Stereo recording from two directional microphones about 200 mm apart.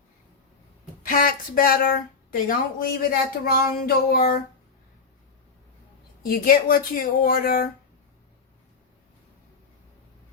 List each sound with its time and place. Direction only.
1.0 s speech: 45° left (ahead or behind)
6.2 s speech: 45° left (ahead or behind)